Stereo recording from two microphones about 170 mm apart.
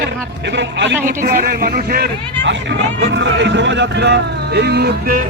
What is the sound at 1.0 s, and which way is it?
Speech, 55° right (ahead or behind).